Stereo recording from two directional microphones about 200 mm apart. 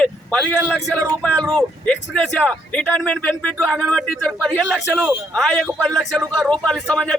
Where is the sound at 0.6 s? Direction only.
5° right (ahead or behind).